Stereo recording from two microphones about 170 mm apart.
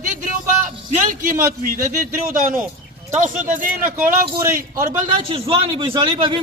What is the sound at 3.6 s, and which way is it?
Speech, 50° right (ahead or behind).